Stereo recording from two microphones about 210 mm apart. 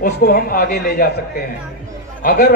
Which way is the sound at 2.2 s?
45° left (ahead or behind).